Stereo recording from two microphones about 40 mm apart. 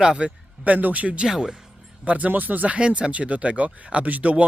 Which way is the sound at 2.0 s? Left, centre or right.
Right.